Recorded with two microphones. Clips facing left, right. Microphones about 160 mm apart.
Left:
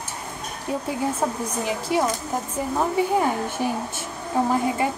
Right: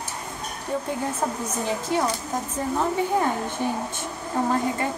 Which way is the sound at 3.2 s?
10° left (ahead or behind).